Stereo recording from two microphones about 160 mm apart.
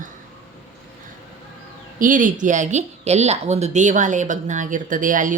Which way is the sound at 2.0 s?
55° right (ahead or behind).